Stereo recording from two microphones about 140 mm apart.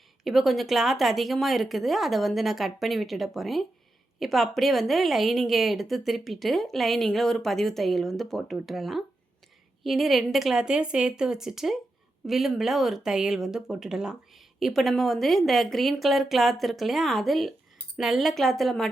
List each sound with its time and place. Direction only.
0.3 s speech: centre (ahead or behind)